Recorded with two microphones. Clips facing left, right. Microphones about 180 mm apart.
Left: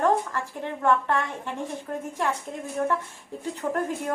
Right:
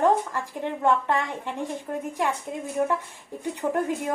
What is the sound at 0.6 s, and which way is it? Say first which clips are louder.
Speech: right 1 dB; 15° right (ahead or behind).